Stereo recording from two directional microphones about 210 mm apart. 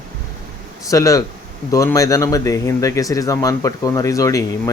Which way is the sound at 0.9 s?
15° left (ahead or behind).